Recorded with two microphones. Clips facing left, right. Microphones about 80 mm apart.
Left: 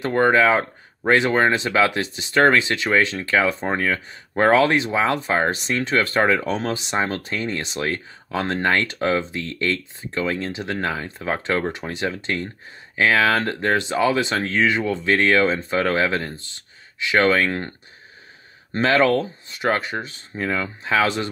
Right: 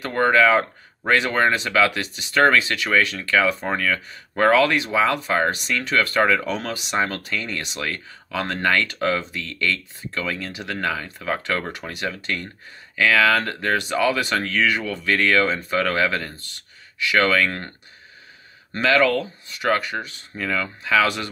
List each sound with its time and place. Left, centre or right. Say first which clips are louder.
0.0 s speech: left 1 dB; left
18.7 s speech: left 1 dB; left